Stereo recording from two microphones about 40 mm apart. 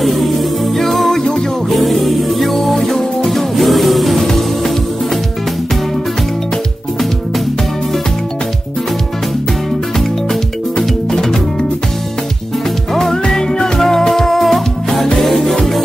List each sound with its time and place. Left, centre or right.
0.0 s music: centre
10.8 s music: centre
12.9 s music: centre